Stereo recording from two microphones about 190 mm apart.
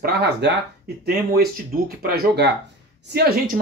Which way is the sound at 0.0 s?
60° right (ahead or behind).